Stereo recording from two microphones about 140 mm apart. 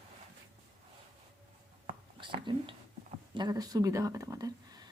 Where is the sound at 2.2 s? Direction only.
35° right (ahead or behind).